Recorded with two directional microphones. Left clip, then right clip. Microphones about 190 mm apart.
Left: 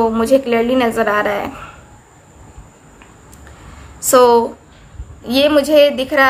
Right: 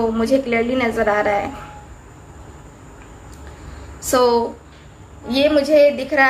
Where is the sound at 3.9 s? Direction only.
35° left (ahead or behind).